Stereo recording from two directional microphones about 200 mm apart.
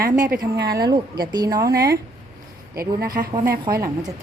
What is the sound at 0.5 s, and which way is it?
Speech, 55° right (ahead or behind).